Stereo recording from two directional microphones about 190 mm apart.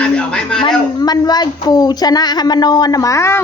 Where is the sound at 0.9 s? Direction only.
20° left (ahead or behind).